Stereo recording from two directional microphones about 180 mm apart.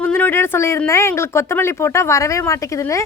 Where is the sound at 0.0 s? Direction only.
10° left (ahead or behind).